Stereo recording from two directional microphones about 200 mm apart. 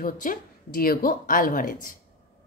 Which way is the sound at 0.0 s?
40° left (ahead or behind).